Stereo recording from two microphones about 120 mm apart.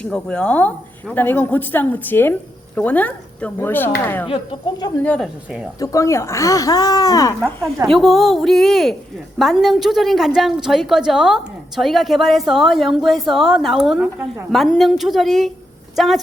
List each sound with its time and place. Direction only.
0.0 s a woman's voice: 10° left (ahead or behind)
4.3 s speech: 45° left (ahead or behind)
5.0 s a woman's voice: 10° left (ahead or behind)
5.8 s speech: 25° left (ahead or behind)
7.9 s a woman's voice: centre (ahead or behind)